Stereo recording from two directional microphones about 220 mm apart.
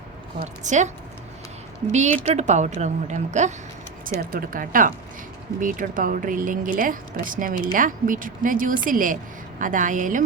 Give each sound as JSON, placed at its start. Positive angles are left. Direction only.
{"t": 0.3, "sound": "speech", "side_deg": -30}
{"t": 1.9, "sound": "speech", "side_deg": -30}